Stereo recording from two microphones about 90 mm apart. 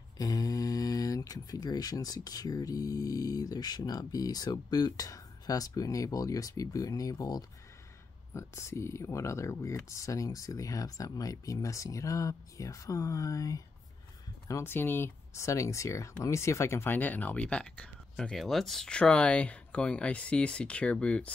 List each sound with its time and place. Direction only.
0.2 s speech: 40° left (ahead or behind)
8.3 s speech: 30° left (ahead or behind)
14.5 s speech: 25° left (ahead or behind)